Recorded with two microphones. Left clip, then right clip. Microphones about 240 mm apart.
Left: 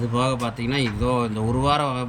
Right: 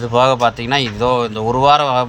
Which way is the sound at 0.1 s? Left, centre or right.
Centre.